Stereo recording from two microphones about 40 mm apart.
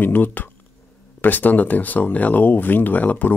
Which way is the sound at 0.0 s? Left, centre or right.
Left.